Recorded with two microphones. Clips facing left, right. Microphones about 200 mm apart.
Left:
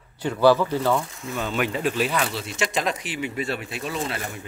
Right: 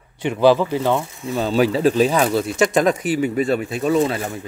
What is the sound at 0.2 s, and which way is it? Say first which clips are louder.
Speech: right 3 dB; 20° right (ahead or behind).